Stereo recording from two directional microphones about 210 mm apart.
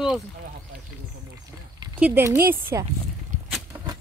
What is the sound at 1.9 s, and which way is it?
Speech, 10° right (ahead or behind).